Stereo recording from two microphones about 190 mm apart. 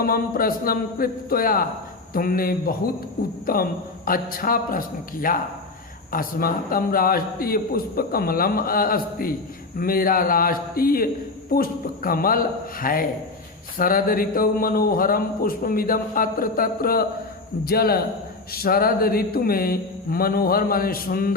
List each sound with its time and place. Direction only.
0.0 s speech: 50° left (ahead or behind)